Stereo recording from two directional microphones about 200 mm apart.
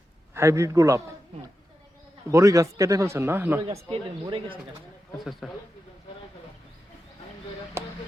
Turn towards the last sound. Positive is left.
turn(degrees=-15)  # may be behind; listen again after turning